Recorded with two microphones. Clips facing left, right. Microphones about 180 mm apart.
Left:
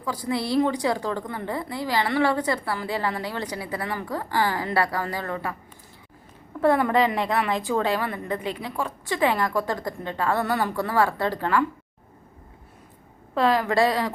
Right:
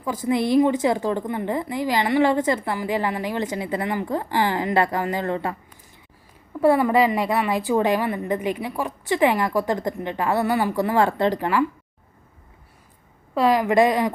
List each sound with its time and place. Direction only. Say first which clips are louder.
0.3 s a woman's voice: right 5 dB; 15° right (ahead or behind)
6.6 s a woman's voice: right 3 dB; 10° right (ahead or behind)
7.7 s a woman's voice: right 4 dB; 15° right (ahead or behind)
13.3 s a woman's voice: right 3 dB; 10° right (ahead or behind)